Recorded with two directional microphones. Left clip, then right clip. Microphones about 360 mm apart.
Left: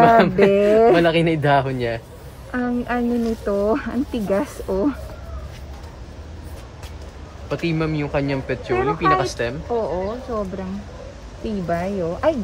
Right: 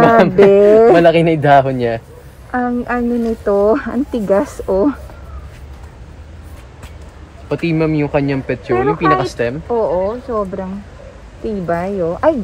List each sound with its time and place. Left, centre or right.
0.0 s speech: right
7.4 s speech: right
11.6 s speech: centre